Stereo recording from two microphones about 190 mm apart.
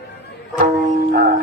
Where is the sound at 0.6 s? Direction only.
45° right (ahead or behind).